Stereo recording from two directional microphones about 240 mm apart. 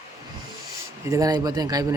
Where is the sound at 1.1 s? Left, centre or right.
Centre.